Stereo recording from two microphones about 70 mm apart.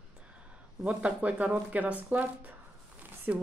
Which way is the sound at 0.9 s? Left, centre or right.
Centre.